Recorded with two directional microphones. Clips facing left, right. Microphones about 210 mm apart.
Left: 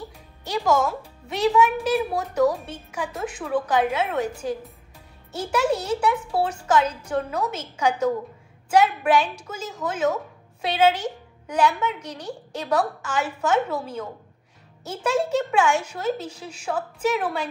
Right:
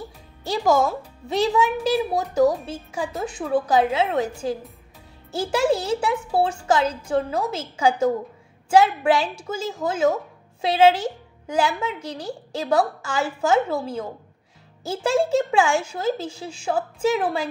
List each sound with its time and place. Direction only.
0.5 s a woman's voice: 30° right (ahead or behind)
11.4 s a woman's voice: 30° right (ahead or behind)